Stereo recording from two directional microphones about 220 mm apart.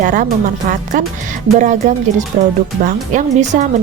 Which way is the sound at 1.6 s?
35° right (ahead or behind).